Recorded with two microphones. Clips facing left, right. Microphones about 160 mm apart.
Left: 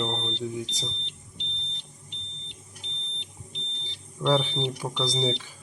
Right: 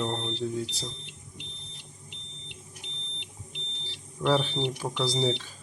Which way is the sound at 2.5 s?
5° right (ahead or behind).